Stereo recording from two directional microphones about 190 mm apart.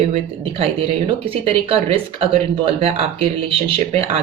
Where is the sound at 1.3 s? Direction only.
30° right (ahead or behind).